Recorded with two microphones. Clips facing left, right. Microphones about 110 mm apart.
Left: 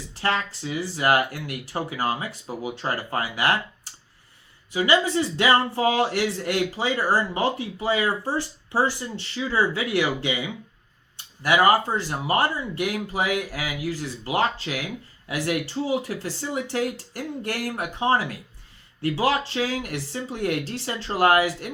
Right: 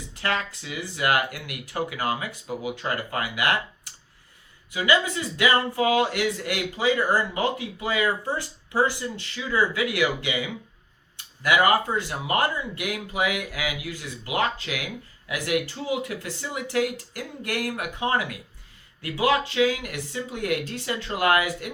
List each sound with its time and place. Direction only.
0.1 s speech: 30° left (ahead or behind)
4.7 s speech: 30° left (ahead or behind)
11.4 s speech: 30° left (ahead or behind)